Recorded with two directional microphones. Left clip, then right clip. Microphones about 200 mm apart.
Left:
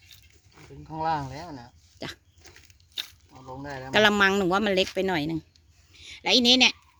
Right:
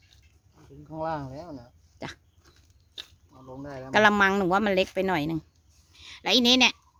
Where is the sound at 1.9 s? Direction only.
Centre (ahead or behind).